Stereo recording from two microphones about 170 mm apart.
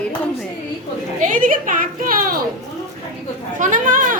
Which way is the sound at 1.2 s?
50° right (ahead or behind).